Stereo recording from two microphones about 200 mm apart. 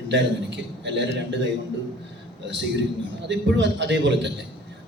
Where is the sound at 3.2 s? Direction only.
60° right (ahead or behind).